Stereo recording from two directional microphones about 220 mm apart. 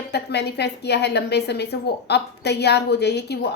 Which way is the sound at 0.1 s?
50° left (ahead or behind).